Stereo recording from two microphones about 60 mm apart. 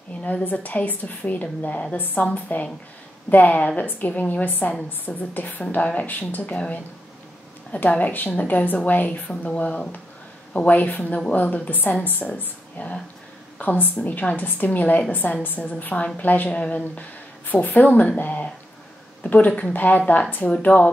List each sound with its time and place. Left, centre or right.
0.2 s a woman's voice: left
7.7 s a woman's voice: left